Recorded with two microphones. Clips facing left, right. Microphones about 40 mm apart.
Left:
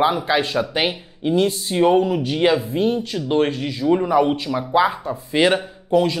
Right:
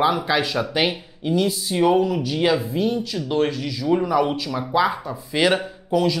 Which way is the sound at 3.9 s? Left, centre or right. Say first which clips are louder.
Left 2 dB; centre.